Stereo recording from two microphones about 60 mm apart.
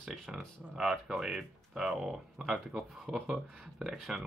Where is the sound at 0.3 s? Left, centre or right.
Centre.